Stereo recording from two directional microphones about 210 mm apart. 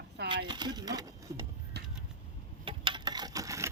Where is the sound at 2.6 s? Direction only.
25° right (ahead or behind).